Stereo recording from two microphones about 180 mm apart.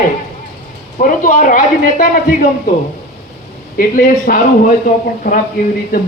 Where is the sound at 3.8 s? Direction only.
50° left (ahead or behind).